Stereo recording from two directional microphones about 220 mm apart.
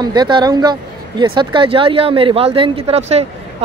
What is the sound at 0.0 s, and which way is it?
Speech, 20° right (ahead or behind).